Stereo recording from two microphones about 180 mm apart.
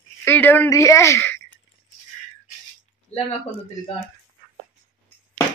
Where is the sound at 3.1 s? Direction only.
35° left (ahead or behind).